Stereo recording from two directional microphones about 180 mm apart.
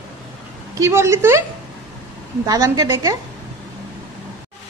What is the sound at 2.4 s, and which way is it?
Speech, 20° right (ahead or behind).